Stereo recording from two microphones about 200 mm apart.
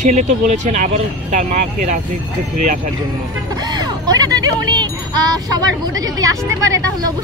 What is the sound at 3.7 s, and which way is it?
Speech, 20° right (ahead or behind).